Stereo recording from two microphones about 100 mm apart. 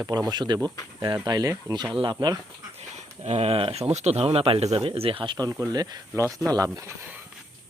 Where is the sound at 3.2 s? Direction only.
90° right; by 5.3 s 60° right (ahead or behind).